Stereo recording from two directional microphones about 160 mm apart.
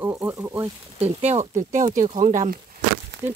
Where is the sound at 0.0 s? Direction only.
15° right (ahead or behind).